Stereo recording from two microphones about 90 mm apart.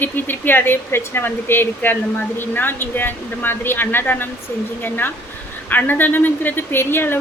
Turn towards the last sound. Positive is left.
turn(degrees=25)  # may be behind; listen again after turning